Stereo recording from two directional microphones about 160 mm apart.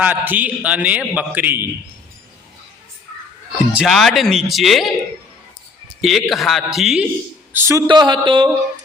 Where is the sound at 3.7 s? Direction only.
5° right (ahead or behind).